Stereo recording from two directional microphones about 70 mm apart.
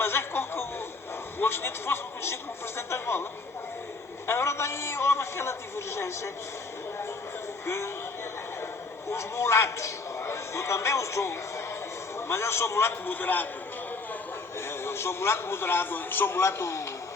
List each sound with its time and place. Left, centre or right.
0.0 s a sound: left
1.4 s a man's voice: left
4.3 s a man's voice: left
7.6 s music: left
9.0 s a man's voice: left
13.1 s a man's voice: left
14.7 s a man's voice: left